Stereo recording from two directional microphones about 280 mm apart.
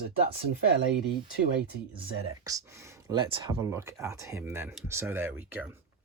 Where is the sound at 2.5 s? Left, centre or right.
Centre.